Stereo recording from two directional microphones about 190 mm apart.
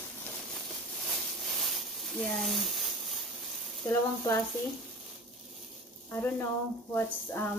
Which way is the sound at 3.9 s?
15° left (ahead or behind).